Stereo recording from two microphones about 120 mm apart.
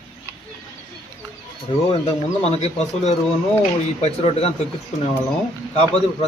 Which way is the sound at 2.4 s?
65° left (ahead or behind).